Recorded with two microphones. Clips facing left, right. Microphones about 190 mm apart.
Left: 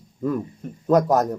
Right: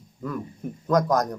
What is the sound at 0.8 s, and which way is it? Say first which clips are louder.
Speech: left 4 dB; 20° left (ahead or behind).